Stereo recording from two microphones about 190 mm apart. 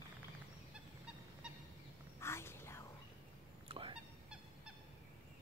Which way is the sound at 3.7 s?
30° right (ahead or behind).